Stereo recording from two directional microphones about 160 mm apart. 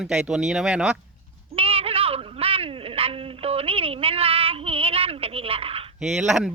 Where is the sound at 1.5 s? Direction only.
35° right (ahead or behind).